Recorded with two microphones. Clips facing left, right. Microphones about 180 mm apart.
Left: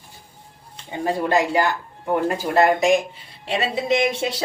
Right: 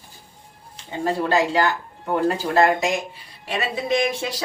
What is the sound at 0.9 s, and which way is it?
Speech, 15° left (ahead or behind).